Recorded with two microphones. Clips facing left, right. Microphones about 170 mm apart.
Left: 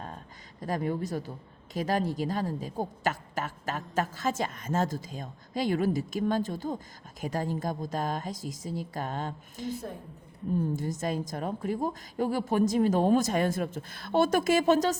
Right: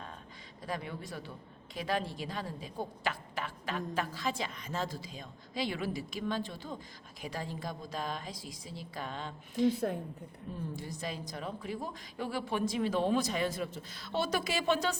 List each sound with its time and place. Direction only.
0.6 s a woman's voice: 45° left (ahead or behind)
10.8 s a woman's voice: 45° left (ahead or behind)